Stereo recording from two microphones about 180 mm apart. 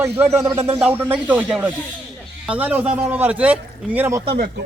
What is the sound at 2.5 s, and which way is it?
A man's voice, 10° right (ahead or behind).